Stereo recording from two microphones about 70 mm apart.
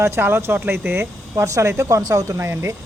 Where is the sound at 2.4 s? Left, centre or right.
Right.